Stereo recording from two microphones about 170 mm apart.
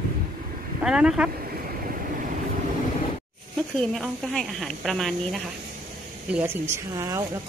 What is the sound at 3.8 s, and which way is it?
A woman's voice, centre (ahead or behind).